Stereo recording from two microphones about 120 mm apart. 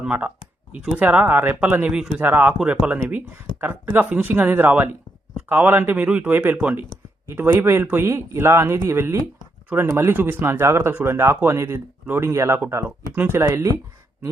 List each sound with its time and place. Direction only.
0.0 s speech: 10° right (ahead or behind)